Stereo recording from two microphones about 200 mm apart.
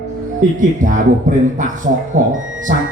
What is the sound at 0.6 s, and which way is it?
Speech, 40° right (ahead or behind).